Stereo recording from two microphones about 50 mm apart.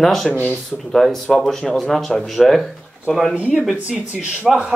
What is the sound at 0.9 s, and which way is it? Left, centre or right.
A man's voice, centre.